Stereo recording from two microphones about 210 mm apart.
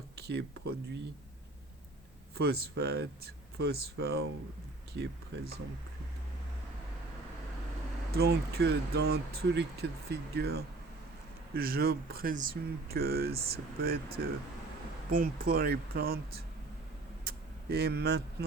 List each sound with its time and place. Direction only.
0.2 s speech: 50° right (ahead or behind)
2.3 s speech: 50° right (ahead or behind)
8.1 s speech: 50° right (ahead or behind)
15.1 s speech: 45° right (ahead or behind)
17.2 s a sound: 50° right (ahead or behind)